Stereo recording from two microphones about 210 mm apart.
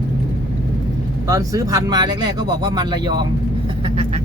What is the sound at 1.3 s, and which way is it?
Speech, 15° right (ahead or behind).